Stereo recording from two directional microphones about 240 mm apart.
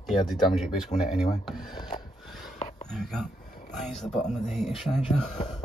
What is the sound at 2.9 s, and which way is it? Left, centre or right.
Speech, centre.